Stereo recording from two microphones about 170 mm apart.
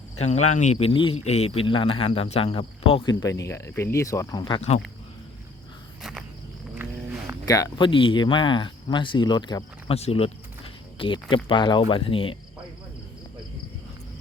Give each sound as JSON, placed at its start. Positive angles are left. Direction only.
{"t": 0.2, "sound": "speech", "side_deg": 40}
{"t": 6.0, "sound": "insect", "side_deg": 0}
{"t": 7.4, "sound": "speech", "side_deg": 20}